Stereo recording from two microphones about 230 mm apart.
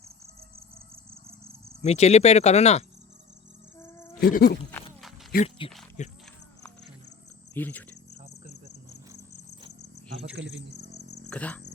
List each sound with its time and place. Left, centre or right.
1.8 s speech: left
3.8 s a sound: centre
4.2 s speech: left
4.7 s a sound: centre
5.3 s speech: left
7.5 s speech: centre
10.4 s speech: right
11.3 s speech: centre